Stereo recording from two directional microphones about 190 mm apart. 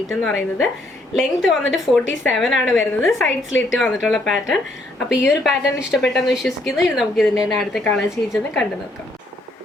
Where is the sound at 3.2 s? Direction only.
80° left.